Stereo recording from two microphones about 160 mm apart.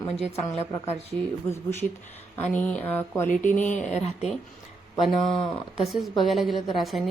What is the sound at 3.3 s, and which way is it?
Speech, 55° left (ahead or behind).